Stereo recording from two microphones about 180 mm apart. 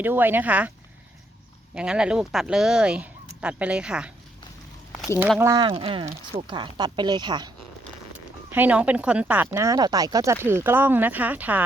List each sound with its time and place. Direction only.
0.0 s speech: 10° right (ahead or behind)
1.7 s speech: 5° right (ahead or behind)
4.9 s a sound: 15° left (ahead or behind)
5.4 s speech: 20° right (ahead or behind)
8.4 s speech: 10° right (ahead or behind)